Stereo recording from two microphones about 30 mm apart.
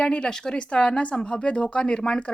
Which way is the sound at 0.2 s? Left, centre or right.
Left.